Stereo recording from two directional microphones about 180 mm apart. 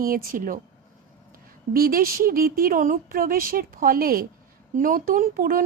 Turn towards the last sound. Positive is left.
turn(degrees=-50)  # may be behind; listen again after turning